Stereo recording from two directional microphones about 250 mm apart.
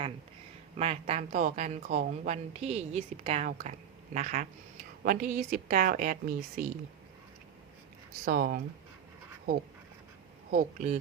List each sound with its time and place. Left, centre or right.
0.8 s a woman's voice: right
8.2 s a woman's voice: right
10.5 s a woman's voice: right